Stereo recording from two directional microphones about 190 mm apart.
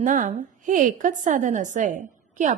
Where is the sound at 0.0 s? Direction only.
40° right (ahead or behind).